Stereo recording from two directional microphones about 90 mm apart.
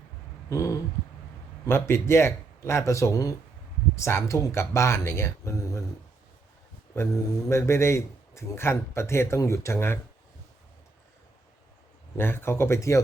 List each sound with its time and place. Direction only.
0.5 s a sound: 35° left (ahead or behind)
1.6 s a man's voice: 30° left (ahead or behind)
6.9 s a man's voice: 35° left (ahead or behind)
12.1 s speech: 25° left (ahead or behind)